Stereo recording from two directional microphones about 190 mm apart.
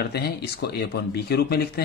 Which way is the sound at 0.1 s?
60° left (ahead or behind).